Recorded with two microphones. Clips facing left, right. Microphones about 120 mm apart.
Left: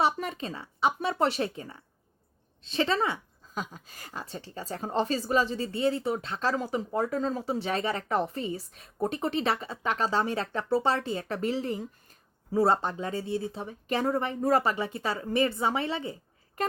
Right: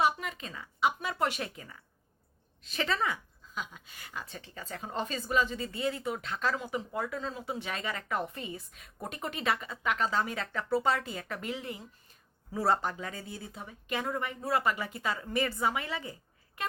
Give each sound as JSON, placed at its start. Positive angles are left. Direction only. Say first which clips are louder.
{"t": 0.0, "sound": "speech", "louder": "left 2 dB", "side_deg": 30}
{"t": 3.5, "sound": "a woman's voice", "louder": "left 4 dB", "side_deg": 40}